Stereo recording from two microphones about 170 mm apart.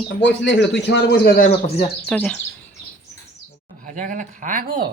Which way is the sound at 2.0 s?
5° left (ahead or behind).